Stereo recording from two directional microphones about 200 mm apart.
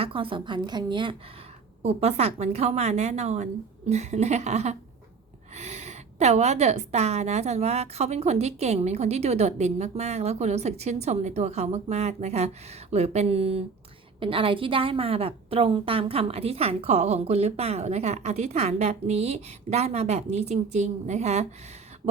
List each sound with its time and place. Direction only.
0.0 s a woman's voice: 25° right (ahead or behind)